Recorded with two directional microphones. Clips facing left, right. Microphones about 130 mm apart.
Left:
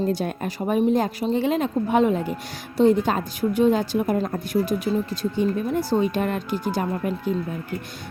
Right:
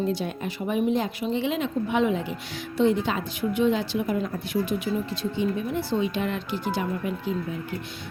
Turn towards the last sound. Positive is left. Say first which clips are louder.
# left 3 dB
turn(degrees=45)  # may be behind; listen again after turning